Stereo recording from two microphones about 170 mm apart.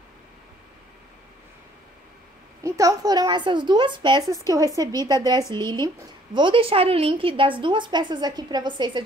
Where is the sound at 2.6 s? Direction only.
20° right (ahead or behind).